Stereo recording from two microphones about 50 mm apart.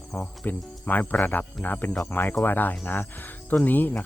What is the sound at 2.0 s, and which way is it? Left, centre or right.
Speech, left.